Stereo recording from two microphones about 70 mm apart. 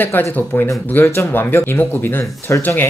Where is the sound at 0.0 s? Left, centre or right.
Left.